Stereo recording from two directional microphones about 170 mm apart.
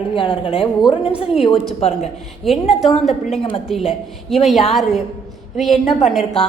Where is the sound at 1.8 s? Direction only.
40° left (ahead or behind).